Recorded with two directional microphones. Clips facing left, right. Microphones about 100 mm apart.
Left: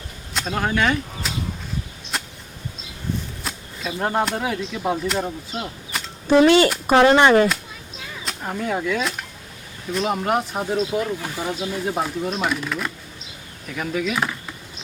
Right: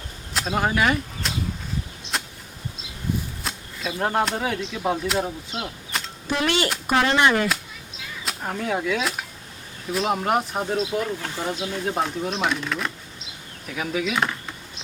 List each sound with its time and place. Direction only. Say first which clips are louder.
0.3 s speech: even; 5° right (ahead or behind)
2.1 s a sound: even; centre (ahead or behind)
3.4 s speech: left 1 dB; centre (ahead or behind)
6.2 s speech: left 10 dB; 30° left (ahead or behind)
8.2 s speech: left 1 dB; centre (ahead or behind)